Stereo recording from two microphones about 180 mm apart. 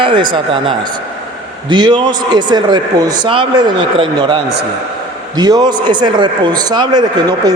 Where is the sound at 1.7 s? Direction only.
25° right (ahead or behind).